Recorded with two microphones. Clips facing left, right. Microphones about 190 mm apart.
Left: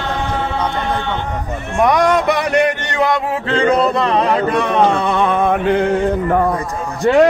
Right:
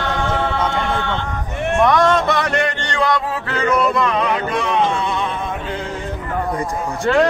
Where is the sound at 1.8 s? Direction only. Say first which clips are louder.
Left 3 dB; 15° left (ahead or behind); by 4.3 s 35° left (ahead or behind).